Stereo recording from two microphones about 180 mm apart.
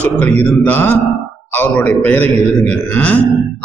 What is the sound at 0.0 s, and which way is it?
A man's voice, 10° left (ahead or behind).